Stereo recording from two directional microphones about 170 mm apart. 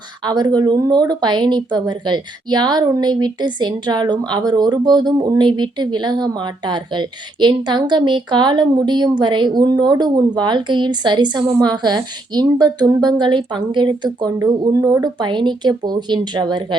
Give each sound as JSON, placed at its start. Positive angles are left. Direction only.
{"t": 0.3, "sound": "speech", "side_deg": -25}